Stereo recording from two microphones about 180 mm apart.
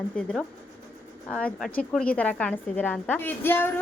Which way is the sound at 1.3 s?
5° left (ahead or behind).